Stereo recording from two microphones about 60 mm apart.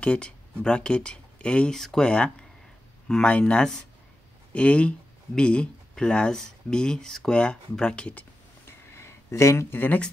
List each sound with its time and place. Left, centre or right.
0.0 s speech: centre
8.9 s a sound: left
9.7 s speech: left